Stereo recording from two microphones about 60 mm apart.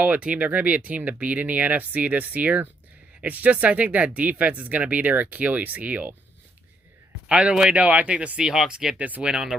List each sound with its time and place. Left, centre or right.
0.0 s speech: right
7.3 s speech: centre
9.0 s speech: right
9.2 s speech: centre